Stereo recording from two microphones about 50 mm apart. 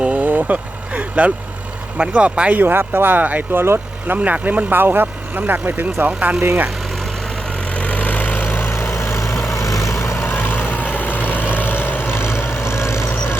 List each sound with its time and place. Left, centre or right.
0.1 s vehicle: right
2.0 s speech: right
2.6 s speech: right
3.5 s speech: right
4.2 s speech: right
7.7 s vehicle: left
8.4 s vehicle: left
9.5 s vehicle: left
10.2 s vehicle: left
10.7 s vehicle: right
10.9 s vehicle: left